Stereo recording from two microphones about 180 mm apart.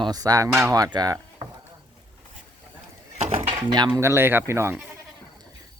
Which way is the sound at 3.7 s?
25° right (ahead or behind).